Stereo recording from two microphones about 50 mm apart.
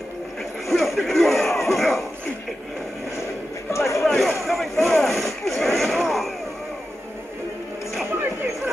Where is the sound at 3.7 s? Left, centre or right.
Left.